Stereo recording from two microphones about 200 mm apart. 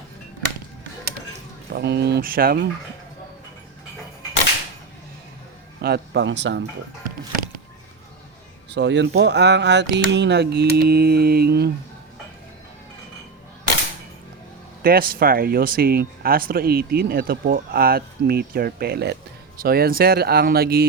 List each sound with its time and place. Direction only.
1.7 s speech: 55° right (ahead or behind)
5.8 s speech: 55° right (ahead or behind)
8.7 s speech: 60° right (ahead or behind)
14.8 s speech: 45° right (ahead or behind)